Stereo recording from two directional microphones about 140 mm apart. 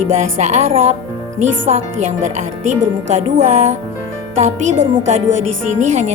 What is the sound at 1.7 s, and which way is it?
Speech, 50° right (ahead or behind).